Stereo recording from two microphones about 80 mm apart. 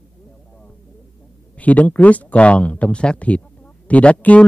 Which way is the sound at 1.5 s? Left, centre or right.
Centre.